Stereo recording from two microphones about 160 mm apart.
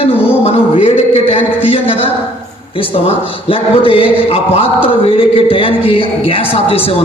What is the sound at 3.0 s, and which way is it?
A man's voice, 35° left (ahead or behind).